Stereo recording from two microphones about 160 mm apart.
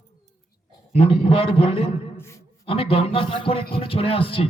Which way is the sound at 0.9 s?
35° left (ahead or behind).